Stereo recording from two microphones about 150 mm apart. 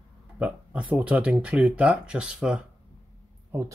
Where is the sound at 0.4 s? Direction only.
5° right (ahead or behind).